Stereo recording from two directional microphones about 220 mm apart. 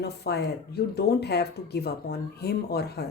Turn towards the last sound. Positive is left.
turn(degrees=45)  # may be behind; listen again after turning